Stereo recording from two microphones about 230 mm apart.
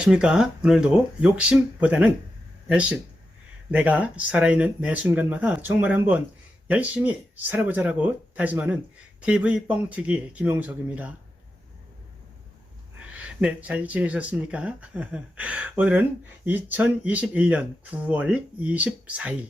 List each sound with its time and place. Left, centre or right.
0.0 s speech: centre
13.0 s speech: centre